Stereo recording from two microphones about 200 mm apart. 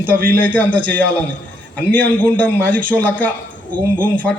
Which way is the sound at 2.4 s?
5° left (ahead or behind).